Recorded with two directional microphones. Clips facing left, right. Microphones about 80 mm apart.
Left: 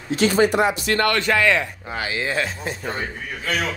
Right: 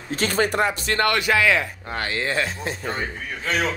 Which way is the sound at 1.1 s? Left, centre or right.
Centre.